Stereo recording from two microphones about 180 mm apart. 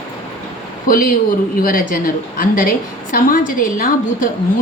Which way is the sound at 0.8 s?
50° left (ahead or behind).